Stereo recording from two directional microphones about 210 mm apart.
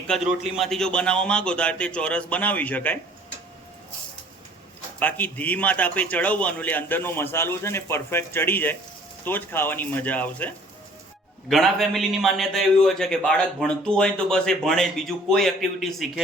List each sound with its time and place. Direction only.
0.1 s a man's voice: centre (ahead or behind)
4.9 s a man's voice: 10° left (ahead or behind)